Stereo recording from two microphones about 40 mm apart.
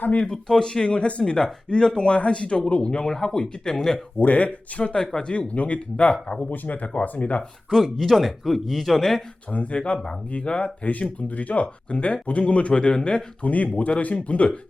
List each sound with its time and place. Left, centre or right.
0.4 s speech: centre
4.2 s speech: left
6.2 s speech: centre
6.5 s speech: left
7.7 s speech: centre
9.5 s speech: left
13.4 s speech: left